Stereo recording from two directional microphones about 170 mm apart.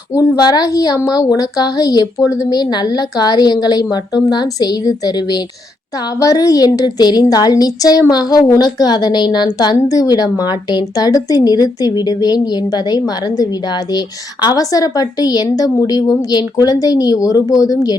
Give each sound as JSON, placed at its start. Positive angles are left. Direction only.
{"t": 0.1, "sound": "a woman's voice", "side_deg": 20}